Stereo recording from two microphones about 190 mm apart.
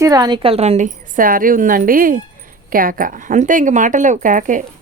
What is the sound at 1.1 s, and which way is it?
Speech, 45° right (ahead or behind).